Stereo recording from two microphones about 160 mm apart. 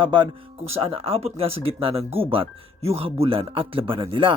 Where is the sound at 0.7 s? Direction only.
35° right (ahead or behind).